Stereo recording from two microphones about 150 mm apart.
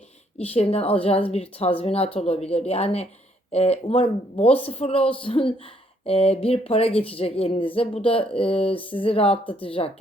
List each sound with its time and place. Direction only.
0.3 s speech: 40° left (ahead or behind)